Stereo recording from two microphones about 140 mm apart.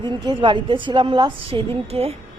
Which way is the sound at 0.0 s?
35° right (ahead or behind).